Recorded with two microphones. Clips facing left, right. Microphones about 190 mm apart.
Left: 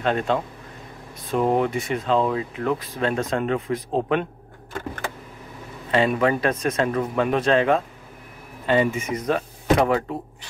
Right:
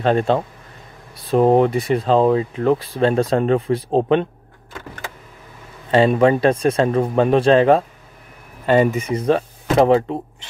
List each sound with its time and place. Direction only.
0.0 s speech: 30° right (ahead or behind)
5.9 s speech: 30° right (ahead or behind)